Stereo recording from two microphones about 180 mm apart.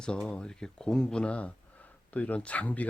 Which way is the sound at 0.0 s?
5° left (ahead or behind).